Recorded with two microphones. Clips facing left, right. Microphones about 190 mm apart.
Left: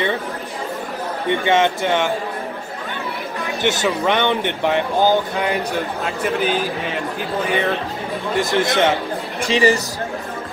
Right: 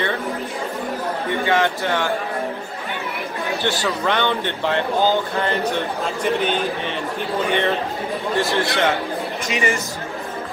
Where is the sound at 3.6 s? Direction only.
20° left (ahead or behind); by 6.9 s 5° left (ahead or behind).